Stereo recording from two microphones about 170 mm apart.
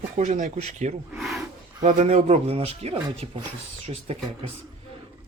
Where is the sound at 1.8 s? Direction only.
45° right (ahead or behind).